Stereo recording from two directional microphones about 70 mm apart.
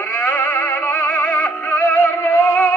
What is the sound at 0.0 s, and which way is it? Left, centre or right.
Music, centre.